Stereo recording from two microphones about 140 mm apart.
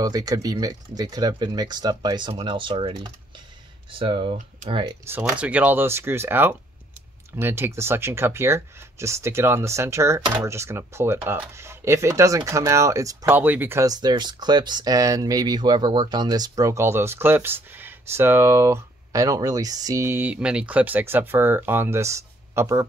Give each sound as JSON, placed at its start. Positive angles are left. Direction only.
{"t": 0.0, "sound": "speech", "side_deg": -25}
{"t": 5.0, "sound": "speech", "side_deg": -10}
{"t": 13.3, "sound": "speech", "side_deg": -15}